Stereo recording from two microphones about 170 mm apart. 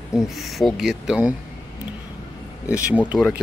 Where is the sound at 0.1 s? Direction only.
Centre (ahead or behind).